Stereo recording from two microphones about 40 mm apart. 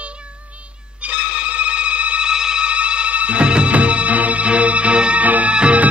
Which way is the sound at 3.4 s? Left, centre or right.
Right.